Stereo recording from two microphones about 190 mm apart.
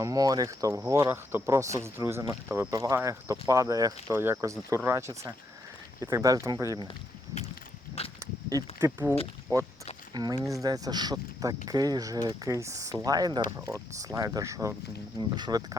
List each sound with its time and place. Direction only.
0.0 s speech: 20° right (ahead or behind)
8.2 s a sound: 15° right (ahead or behind)
9.5 s speech: 20° right (ahead or behind)